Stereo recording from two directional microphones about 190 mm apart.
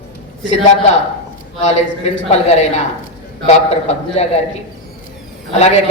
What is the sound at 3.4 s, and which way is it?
Speech, 35° left (ahead or behind).